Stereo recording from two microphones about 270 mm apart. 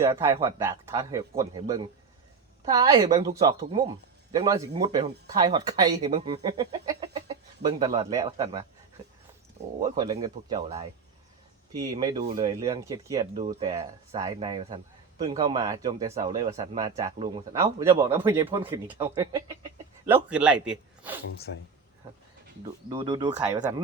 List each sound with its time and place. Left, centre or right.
0.0 s speech: centre
9.8 s speech: centre
21.3 s speech: left
22.9 s speech: centre